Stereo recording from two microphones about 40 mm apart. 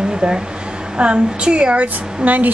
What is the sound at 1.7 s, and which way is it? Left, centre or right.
Speech, right.